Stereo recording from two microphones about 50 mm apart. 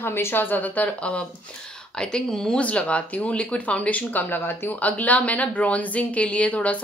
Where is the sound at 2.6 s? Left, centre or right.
Left.